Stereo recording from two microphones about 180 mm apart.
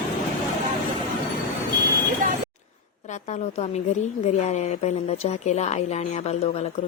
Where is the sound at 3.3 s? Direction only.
40° left (ahead or behind).